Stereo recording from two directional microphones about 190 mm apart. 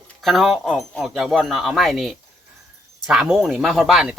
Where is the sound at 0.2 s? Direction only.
Centre (ahead or behind).